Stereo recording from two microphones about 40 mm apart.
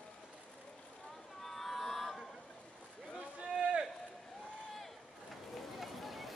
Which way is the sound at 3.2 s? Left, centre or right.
Right.